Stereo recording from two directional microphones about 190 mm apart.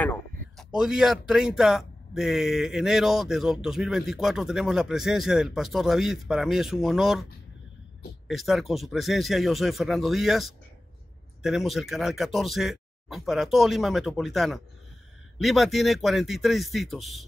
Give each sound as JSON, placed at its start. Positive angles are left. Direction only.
{"t": 0.0, "sound": "a sound", "side_deg": 10}
{"t": 0.7, "sound": "a man's voice", "side_deg": -5}
{"t": 8.3, "sound": "a man's voice", "side_deg": 0}